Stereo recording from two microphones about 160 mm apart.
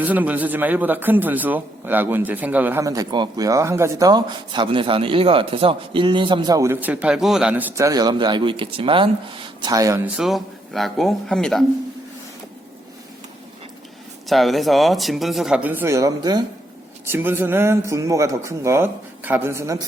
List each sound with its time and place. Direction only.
0.0 s a man's voice: 10° right (ahead or behind)
10.2 s speech: centre (ahead or behind)
14.3 s speech: centre (ahead or behind); by 19.8 s 15° right (ahead or behind)